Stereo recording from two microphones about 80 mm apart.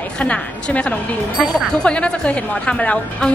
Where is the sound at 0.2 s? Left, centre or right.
Centre.